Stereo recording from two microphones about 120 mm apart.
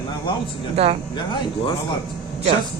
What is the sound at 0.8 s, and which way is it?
Speech, 55° right (ahead or behind).